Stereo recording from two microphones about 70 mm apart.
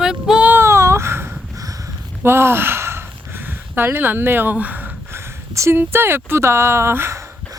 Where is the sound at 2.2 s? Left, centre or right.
Right.